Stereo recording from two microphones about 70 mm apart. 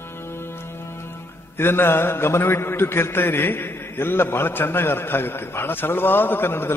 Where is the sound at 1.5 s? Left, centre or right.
Left.